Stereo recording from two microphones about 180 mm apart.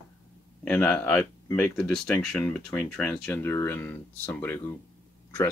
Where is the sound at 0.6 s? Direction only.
10° left (ahead or behind).